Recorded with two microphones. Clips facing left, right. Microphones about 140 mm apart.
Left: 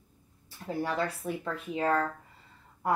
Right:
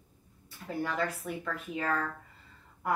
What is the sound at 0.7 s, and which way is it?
Speech, 30° left (ahead or behind).